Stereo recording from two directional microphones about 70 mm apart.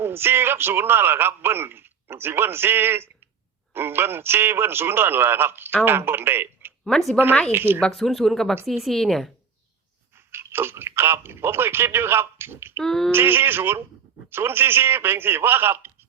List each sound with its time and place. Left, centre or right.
0.0 s a man's voice: right
7.8 s speech: centre
10.3 s a man's voice: right
12.8 s speech: centre
13.1 s a man's voice: right